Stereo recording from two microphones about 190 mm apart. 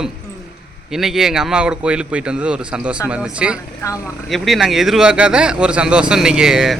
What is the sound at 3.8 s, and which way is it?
Speech, 15° left (ahead or behind).